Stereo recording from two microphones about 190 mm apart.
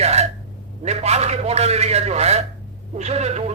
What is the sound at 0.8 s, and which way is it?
Speech, 35° right (ahead or behind).